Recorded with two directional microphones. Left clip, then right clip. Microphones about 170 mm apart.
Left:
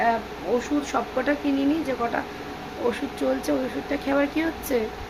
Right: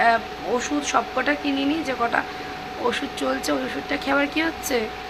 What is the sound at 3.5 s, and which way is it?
Speech, 15° left (ahead or behind).